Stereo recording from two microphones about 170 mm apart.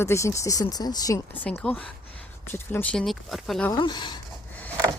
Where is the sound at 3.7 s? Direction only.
25° left (ahead or behind).